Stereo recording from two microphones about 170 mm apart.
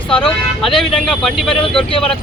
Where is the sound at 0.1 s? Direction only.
Centre (ahead or behind).